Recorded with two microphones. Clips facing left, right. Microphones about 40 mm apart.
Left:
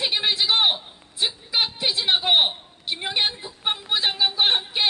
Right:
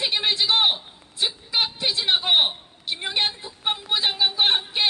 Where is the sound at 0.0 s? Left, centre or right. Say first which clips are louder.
Even; centre.